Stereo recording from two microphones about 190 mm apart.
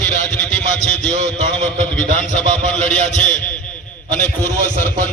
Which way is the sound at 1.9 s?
40° left (ahead or behind).